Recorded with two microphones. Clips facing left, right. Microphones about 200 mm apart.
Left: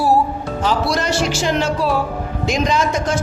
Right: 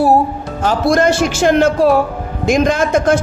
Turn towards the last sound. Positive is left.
turn(degrees=-55)  # may be behind; listen again after turning